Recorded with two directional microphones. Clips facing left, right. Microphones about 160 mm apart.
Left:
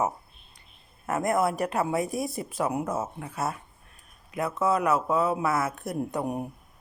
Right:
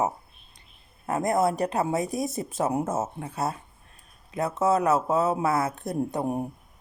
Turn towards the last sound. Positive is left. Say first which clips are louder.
# right 2 dB
turn(degrees=-25)  # may be behind; listen again after turning